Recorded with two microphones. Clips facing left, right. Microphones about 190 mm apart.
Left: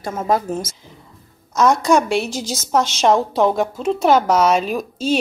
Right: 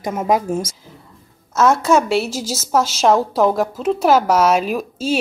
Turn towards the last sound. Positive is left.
turn(degrees=-5)  # may be behind; listen again after turning